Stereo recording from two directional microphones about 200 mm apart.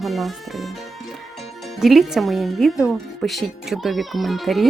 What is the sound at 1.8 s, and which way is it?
Speech, centre (ahead or behind).